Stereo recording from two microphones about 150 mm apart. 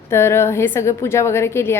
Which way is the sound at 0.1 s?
15° left (ahead or behind).